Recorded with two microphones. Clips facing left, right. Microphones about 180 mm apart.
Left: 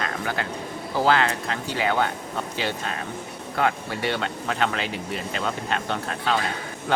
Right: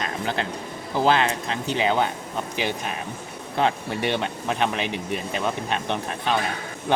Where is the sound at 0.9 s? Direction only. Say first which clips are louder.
Right 1 dB; 20° right (ahead or behind).